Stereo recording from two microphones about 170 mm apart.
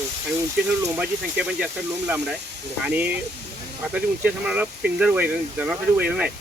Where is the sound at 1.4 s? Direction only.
5° right (ahead or behind).